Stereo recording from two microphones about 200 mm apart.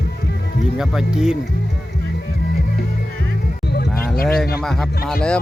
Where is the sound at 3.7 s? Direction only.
50° left (ahead or behind).